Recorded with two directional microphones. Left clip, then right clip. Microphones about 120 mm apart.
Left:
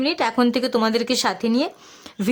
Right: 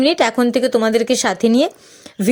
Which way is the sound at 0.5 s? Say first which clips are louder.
Right 5 dB; 15° right (ahead or behind).